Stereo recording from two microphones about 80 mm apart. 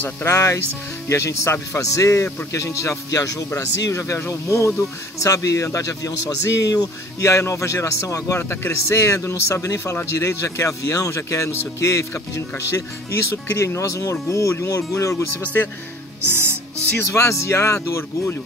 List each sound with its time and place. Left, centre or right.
0.0 s speech: left
7.2 s speech: left
8.4 s speech: left
15.4 s speech: centre
16.3 s music: right
17.0 s speech: left